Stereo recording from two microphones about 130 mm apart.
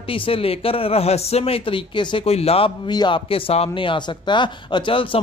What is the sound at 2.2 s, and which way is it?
Speech, 50° left (ahead or behind).